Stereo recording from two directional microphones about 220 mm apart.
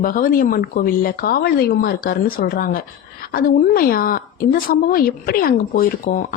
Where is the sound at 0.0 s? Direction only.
40° left (ahead or behind).